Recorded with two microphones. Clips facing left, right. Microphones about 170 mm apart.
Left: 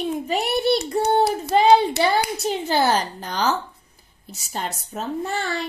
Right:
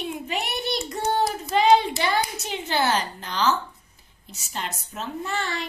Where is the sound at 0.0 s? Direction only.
35° left (ahead or behind).